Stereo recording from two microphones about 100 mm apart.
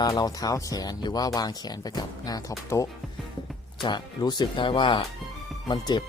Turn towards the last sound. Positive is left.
turn(degrees=40)  # may be behind; listen again after turning